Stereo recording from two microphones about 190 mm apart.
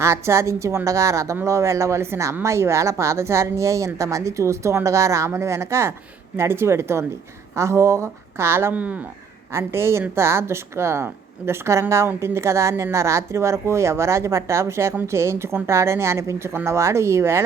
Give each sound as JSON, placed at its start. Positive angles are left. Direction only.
{"t": 0.0, "sound": "speech", "side_deg": -15}